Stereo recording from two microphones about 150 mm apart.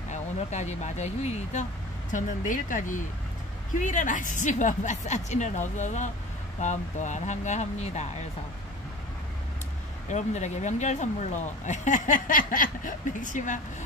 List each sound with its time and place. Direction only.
0.1 s a woman's voice: 50° left (ahead or behind)
10.0 s speech: 50° left (ahead or behind)